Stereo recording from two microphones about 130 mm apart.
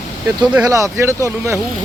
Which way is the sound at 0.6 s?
25° right (ahead or behind).